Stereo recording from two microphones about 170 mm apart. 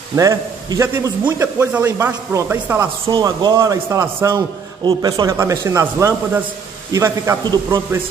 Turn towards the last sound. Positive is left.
turn(degrees=-15)  # may be behind; listen again after turning